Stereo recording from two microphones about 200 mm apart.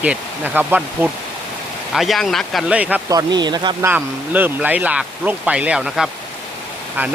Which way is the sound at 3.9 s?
10° right (ahead or behind).